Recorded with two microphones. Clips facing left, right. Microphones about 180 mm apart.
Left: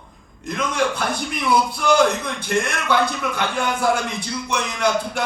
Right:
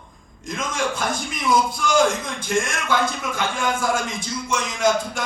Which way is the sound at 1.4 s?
50° right (ahead or behind).